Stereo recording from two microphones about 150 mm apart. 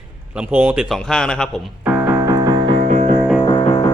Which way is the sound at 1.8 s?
10° right (ahead or behind).